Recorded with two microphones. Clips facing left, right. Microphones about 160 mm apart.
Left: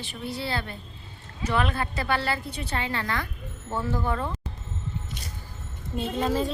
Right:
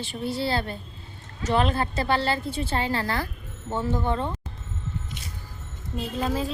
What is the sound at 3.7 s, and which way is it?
Speech, 25° right (ahead or behind).